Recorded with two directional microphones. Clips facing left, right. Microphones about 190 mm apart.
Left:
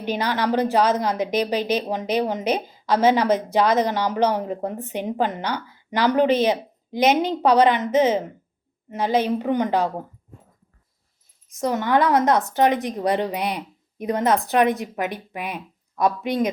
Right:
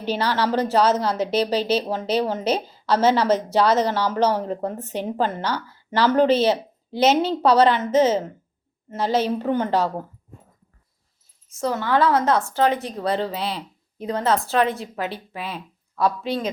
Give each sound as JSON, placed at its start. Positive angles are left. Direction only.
{"t": 0.0, "sound": "a woman's voice", "side_deg": 15}
{"t": 11.6, "sound": "a woman's voice", "side_deg": 15}